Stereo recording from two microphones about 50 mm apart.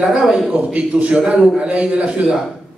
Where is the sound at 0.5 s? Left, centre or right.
Right.